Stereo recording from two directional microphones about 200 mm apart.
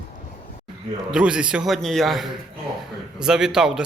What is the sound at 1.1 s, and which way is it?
A man's voice, 5° right (ahead or behind).